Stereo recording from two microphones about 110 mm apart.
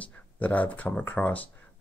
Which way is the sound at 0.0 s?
15° left (ahead or behind).